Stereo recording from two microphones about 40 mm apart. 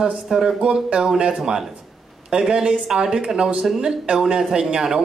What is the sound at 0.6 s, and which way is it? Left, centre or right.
A man's voice, right.